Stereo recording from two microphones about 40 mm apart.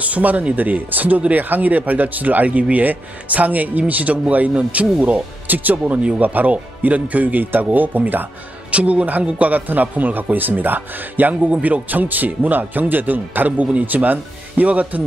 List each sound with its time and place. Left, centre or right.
0.0 s speech: right
5.5 s speech: right
8.7 s speech: right
11.5 s speech: right